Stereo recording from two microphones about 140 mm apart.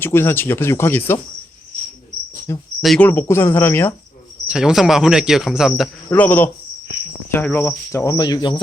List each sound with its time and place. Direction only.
0.0 s speech: 15° left (ahead or behind)
2.5 s cricket: 20° left (ahead or behind)
2.8 s speech: centre (ahead or behind)
3.1 s speech: 15° left (ahead or behind)
4.4 s speech: 5° right (ahead or behind)
6.1 s speech: 15° left (ahead or behind)
7.3 s cricket: 15° left (ahead or behind); by 8.6 s 35° left (ahead or behind)